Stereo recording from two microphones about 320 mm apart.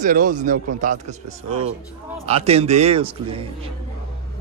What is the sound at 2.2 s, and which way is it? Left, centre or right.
Speech, centre.